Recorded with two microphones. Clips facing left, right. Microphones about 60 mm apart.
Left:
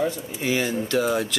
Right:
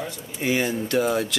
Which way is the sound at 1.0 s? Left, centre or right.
Centre.